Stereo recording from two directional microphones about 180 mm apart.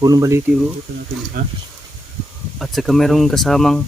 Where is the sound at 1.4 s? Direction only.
55° right (ahead or behind).